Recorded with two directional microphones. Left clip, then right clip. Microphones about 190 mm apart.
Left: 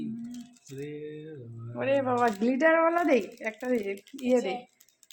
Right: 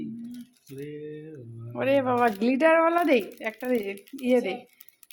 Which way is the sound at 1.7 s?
35° right (ahead or behind).